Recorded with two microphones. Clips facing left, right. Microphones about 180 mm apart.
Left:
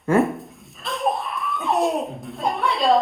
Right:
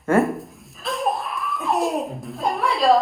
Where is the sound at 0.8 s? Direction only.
Centre (ahead or behind).